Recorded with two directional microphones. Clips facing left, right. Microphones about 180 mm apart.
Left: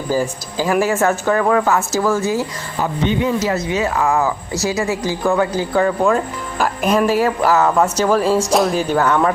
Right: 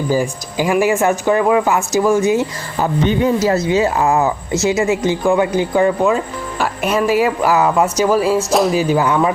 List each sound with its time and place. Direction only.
0.1 s speech: 15° right (ahead or behind)
3.2 s speech: 30° right (ahead or behind); by 9.3 s 10° right (ahead or behind)